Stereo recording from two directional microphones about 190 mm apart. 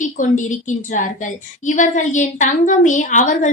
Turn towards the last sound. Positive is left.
turn(degrees=40)  # may be behind; listen again after turning